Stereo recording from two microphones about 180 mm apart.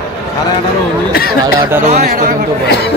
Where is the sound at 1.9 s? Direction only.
55° right (ahead or behind).